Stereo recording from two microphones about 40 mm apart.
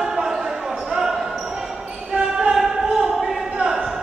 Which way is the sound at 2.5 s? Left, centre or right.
Centre.